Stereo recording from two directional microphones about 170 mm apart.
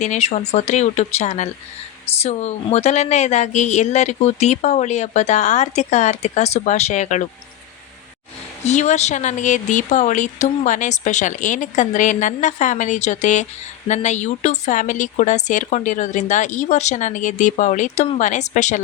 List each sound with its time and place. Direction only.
0.0 s speech: 40° left (ahead or behind)
8.6 s a woman's voice: 40° left (ahead or behind)